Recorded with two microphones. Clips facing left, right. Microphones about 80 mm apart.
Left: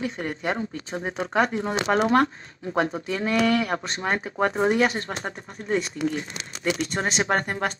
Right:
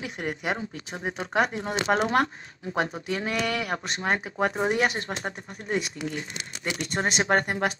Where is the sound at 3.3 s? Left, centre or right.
Left.